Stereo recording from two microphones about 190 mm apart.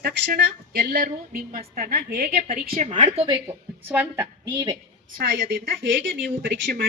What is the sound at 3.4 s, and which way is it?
A woman's voice, 10° right (ahead or behind).